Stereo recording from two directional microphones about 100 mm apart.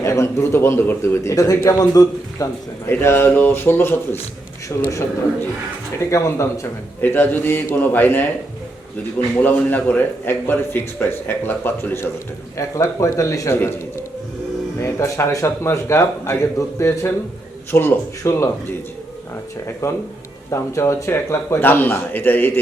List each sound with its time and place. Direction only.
0.0 s a man's voice: 30° left (ahead or behind)
3.0 s a man's voice: 25° left (ahead or behind)
6.1 s a man's voice: 30° left (ahead or behind)
9.3 s a man's voice: 20° left (ahead or behind)
12.5 s a man's voice: 30° left (ahead or behind)
19.8 s a man's voice: 30° left (ahead or behind)